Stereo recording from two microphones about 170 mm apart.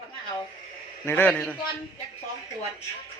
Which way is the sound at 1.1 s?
10° left (ahead or behind).